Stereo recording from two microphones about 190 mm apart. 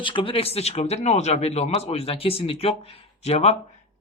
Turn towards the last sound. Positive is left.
turn(degrees=35)  # may be behind; listen again after turning